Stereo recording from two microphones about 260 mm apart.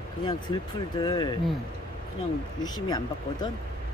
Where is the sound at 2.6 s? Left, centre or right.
Centre.